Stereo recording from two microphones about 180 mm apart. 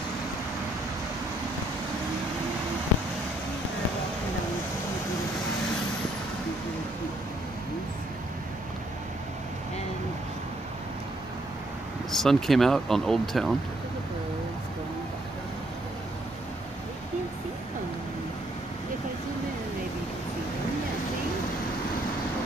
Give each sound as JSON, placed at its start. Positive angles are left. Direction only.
{"t": 12.1, "sound": "speech", "side_deg": 0}